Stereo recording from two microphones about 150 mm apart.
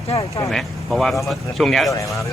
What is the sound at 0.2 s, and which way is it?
Speech, 20° left (ahead or behind).